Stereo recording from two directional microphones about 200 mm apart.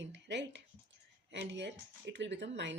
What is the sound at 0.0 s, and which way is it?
Speech, 60° right (ahead or behind).